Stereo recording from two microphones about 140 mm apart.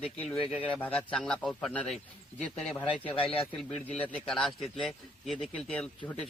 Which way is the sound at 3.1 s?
40° left (ahead or behind).